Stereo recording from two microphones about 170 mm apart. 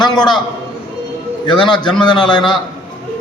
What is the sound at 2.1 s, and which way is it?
Speech, 5° left (ahead or behind).